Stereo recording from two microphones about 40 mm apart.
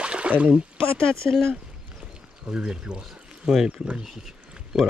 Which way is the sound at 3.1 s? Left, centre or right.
Centre.